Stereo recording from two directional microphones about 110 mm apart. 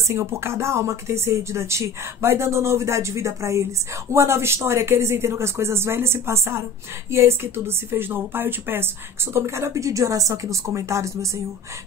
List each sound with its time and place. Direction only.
0.1 s speech: 25° right (ahead or behind)